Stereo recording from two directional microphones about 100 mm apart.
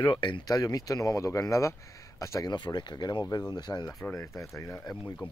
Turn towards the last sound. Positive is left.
turn(degrees=15)  # may be behind; listen again after turning